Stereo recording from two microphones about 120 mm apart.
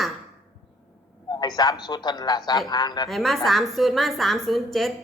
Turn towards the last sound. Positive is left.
turn(degrees=0)  # may be behind; listen again after turning